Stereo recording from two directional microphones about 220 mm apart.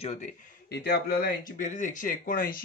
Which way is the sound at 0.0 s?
30° left (ahead or behind).